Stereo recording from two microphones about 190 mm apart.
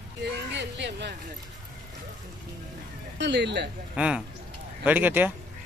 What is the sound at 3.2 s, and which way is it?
Speech, 65° right (ahead or behind).